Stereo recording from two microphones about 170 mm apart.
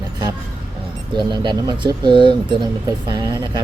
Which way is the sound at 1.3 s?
30° right (ahead or behind).